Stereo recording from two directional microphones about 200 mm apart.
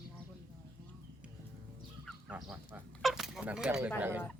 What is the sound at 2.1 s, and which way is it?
Speech, centre (ahead or behind).